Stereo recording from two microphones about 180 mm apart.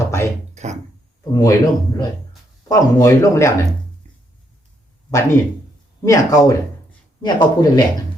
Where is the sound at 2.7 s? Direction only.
15° left (ahead or behind).